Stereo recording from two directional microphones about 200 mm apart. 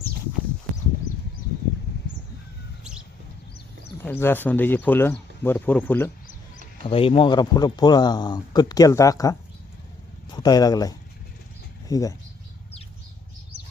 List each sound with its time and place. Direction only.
4.0 s speech: 10° left (ahead or behind)
6.8 s speech: 25° left (ahead or behind)
10.3 s speech: 20° left (ahead or behind)